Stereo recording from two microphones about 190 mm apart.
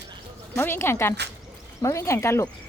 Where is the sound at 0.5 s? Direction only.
10° left (ahead or behind).